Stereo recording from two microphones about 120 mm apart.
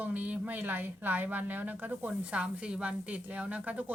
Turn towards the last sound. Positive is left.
turn(degrees=-10)  # may be behind; listen again after turning